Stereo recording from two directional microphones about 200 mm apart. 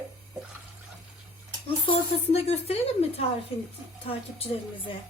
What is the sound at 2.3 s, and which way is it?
A woman's voice, 30° left (ahead or behind).